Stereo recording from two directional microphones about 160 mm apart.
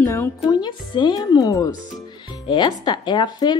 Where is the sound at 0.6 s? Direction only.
30° left (ahead or behind).